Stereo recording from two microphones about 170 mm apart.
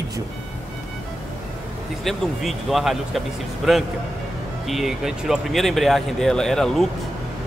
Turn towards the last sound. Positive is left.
turn(degrees=0)  # may be behind; listen again after turning